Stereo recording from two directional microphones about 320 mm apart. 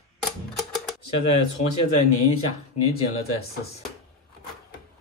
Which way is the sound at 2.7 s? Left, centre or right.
Left.